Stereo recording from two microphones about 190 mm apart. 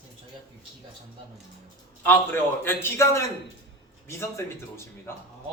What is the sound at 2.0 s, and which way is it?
A woman's voice, 10° left (ahead or behind).